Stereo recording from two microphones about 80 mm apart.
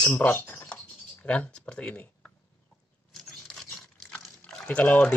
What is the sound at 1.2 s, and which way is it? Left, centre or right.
Speech, centre.